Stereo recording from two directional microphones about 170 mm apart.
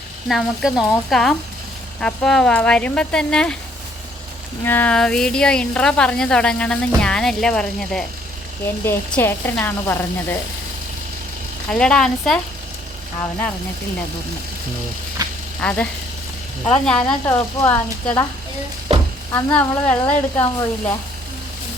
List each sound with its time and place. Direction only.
0.3 s speech: centre (ahead or behind)
4.6 s speech: 10° left (ahead or behind)
11.7 s speech: 5° left (ahead or behind)
15.2 s vehicle: 20° right (ahead or behind)
15.6 s speech: 5° left (ahead or behind)
19.5 s speech: 10° left (ahead or behind)